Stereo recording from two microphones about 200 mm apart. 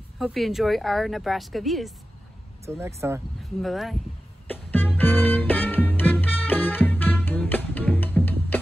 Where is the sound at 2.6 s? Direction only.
15° right (ahead or behind).